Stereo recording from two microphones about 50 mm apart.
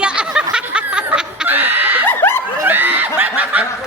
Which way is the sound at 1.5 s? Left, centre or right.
Right.